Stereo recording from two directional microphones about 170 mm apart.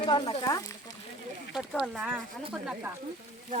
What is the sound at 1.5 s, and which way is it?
Speech, 5° right (ahead or behind).